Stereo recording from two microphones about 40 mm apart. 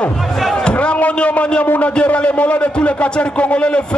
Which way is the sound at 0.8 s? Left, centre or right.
Left.